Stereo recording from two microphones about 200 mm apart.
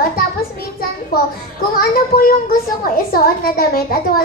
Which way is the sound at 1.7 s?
45° left (ahead or behind).